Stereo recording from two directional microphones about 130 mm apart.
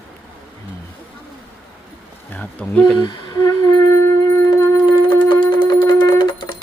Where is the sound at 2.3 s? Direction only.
10° left (ahead or behind).